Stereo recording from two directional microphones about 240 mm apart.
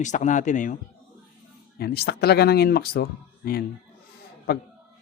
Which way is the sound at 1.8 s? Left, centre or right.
Left.